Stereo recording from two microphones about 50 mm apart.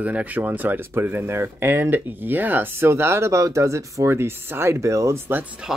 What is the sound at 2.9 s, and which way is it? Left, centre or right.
Speech, right.